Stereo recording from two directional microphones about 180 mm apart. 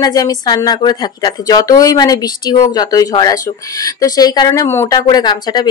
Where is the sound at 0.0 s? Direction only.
20° left (ahead or behind).